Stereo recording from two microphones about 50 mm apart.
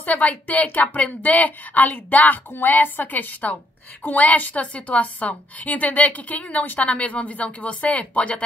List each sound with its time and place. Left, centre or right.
0.0 s speech: left